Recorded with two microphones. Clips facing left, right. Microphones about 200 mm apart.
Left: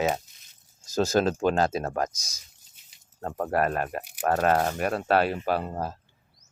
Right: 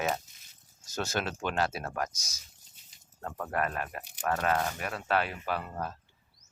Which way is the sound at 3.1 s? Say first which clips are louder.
Left 7 dB; 35° left (ahead or behind).